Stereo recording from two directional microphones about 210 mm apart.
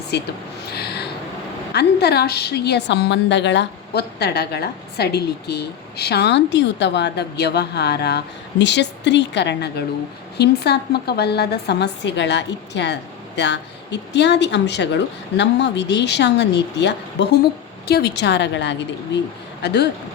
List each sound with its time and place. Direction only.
0.7 s a woman's voice: 50° left (ahead or behind)